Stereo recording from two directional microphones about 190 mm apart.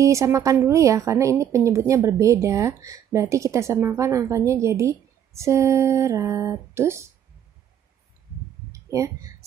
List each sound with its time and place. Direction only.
0.0 s a woman's voice: 15° right (ahead or behind)
8.7 s speech: 15° right (ahead or behind)